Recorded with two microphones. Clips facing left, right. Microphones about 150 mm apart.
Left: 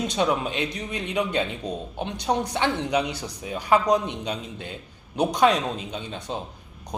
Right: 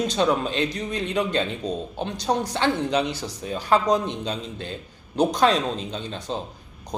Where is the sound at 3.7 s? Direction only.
10° left (ahead or behind).